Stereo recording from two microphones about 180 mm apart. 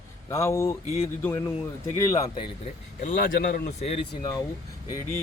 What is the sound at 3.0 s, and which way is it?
Speech, 50° left (ahead or behind).